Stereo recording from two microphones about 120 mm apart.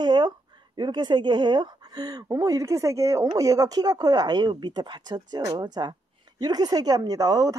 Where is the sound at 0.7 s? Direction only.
40° right (ahead or behind).